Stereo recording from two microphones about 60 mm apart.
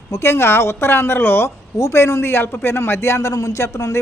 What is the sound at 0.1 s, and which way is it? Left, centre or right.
Speech, left.